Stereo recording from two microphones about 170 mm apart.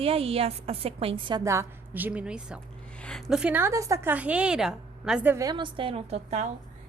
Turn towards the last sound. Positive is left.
turn(degrees=-40)  # may be behind; listen again after turning